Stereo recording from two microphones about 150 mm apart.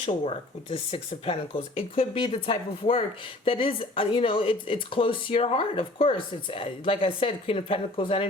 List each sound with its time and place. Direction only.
0.0 s speech: 40° left (ahead or behind)